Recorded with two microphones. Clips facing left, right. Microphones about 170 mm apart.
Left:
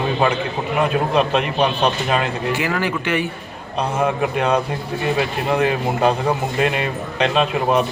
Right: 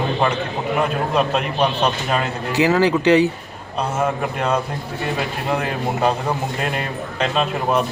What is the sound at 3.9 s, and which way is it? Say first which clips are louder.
A man's voice: left 3 dB; 10° left (ahead or behind).